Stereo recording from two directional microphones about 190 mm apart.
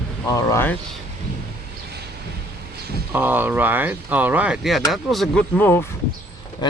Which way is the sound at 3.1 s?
10° right (ahead or behind).